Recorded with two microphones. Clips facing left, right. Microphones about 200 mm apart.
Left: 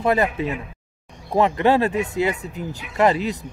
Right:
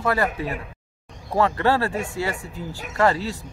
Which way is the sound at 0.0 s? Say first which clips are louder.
Left 3 dB; 20° left (ahead or behind).